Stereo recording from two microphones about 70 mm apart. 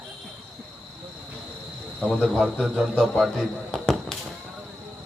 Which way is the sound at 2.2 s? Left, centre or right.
Centre.